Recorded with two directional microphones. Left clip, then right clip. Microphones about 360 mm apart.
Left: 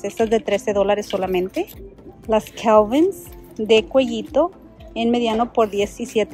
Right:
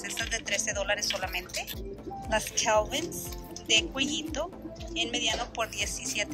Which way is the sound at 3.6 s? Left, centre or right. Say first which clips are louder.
Left 11 dB; centre.